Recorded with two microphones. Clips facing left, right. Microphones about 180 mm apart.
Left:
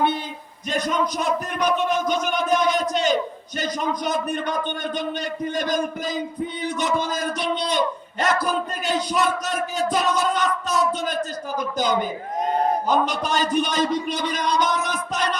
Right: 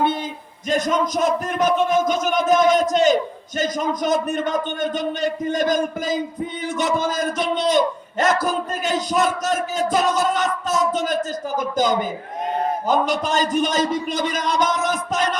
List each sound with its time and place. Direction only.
0.7 s a man's voice: 45° right (ahead or behind)